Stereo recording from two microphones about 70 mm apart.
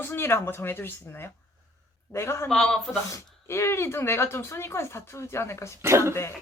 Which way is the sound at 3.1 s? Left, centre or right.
Left.